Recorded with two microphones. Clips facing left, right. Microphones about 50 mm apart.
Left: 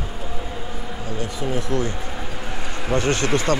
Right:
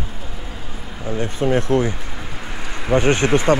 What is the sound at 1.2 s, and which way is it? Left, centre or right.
Speech, right.